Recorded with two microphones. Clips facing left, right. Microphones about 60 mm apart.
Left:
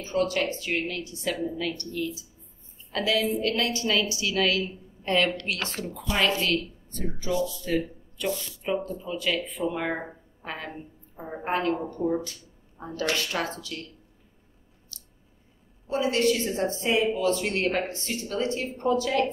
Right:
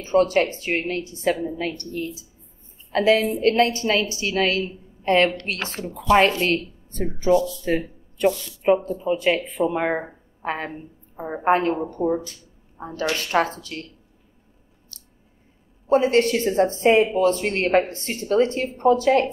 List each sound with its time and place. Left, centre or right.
0.0 s a woman's voice: right
14.9 s a sound: right
15.9 s a woman's voice: right